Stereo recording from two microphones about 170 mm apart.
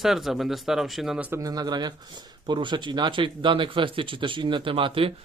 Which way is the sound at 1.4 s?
25° right (ahead or behind).